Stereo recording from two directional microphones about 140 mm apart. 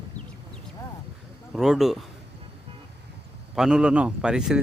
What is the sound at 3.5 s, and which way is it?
A man's voice, 5° right (ahead or behind).